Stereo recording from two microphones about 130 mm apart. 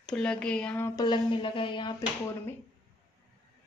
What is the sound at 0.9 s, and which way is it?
Speech, 35° left (ahead or behind).